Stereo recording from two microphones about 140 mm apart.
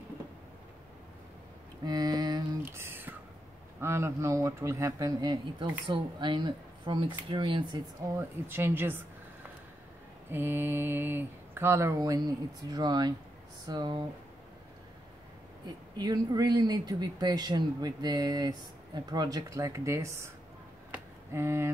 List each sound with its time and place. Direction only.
1.9 s mantra: 30° right (ahead or behind)
2.6 s a sound: 15° right (ahead or behind)
3.8 s speech: 20° right (ahead or behind); by 7.8 s 35° right (ahead or behind)
8.2 s speech: 15° right (ahead or behind)
10.3 s speech: 15° right (ahead or behind); by 14.0 s 30° right (ahead or behind)
15.6 s speech: 30° right (ahead or behind)
20.9 s a sound: 20° right (ahead or behind)